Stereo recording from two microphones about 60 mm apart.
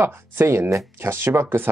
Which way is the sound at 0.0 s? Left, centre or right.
Right.